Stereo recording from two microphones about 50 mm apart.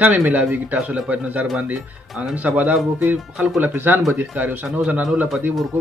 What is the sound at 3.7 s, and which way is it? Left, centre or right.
Speech, right.